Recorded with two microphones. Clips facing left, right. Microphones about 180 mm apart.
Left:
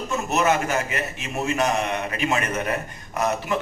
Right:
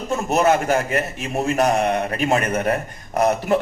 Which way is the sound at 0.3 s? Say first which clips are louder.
Right 4 dB; 35° right (ahead or behind).